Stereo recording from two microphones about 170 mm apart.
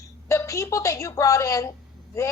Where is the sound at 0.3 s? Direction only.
20° left (ahead or behind).